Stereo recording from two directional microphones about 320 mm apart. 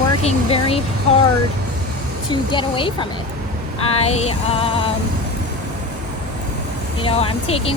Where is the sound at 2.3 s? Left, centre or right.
Centre.